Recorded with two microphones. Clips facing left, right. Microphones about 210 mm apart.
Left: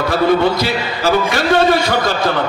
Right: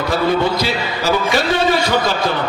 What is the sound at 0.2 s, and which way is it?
A man's voice, 55° left (ahead or behind).